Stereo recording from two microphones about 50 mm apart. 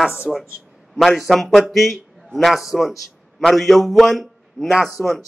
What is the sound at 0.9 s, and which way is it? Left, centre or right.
A man's voice, centre.